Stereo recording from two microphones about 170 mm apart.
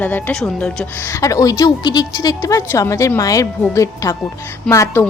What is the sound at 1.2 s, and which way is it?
A woman's voice, 20° left (ahead or behind).